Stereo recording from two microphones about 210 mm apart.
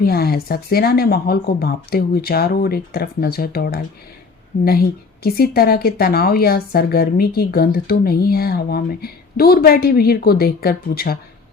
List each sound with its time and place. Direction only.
0.0 s a woman's voice: 45° left (ahead or behind)